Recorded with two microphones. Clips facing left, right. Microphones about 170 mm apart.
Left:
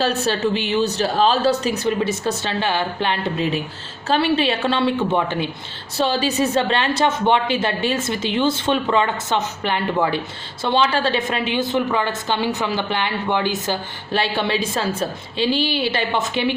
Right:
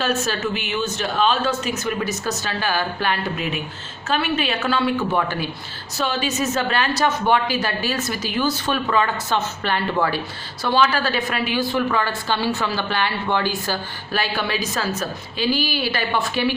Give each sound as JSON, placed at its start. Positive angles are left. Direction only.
{"t": 0.0, "sound": "a woman's voice", "side_deg": 35}
{"t": 6.0, "sound": "a woman's voice", "side_deg": 35}